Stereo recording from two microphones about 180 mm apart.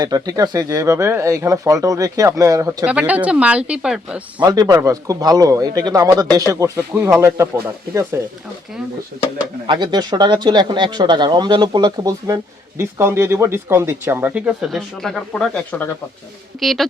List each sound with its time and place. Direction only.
0.0 s speech: 20° right (ahead or behind); by 4.2 s 5° right (ahead or behind)
4.4 s speech: 20° right (ahead or behind)
9.6 s speech: 25° right (ahead or behind); by 16.9 s centre (ahead or behind)